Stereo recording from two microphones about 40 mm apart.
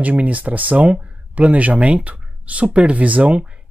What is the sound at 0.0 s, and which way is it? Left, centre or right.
Speech, right.